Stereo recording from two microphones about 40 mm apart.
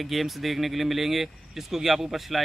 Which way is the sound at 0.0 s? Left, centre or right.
Centre.